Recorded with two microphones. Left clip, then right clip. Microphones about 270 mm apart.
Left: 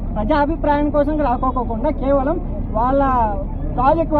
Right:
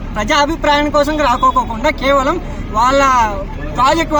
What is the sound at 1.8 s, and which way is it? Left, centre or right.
Speech, right.